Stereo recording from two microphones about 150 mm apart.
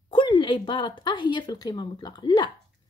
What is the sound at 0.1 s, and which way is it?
Speech, 30° left (ahead or behind).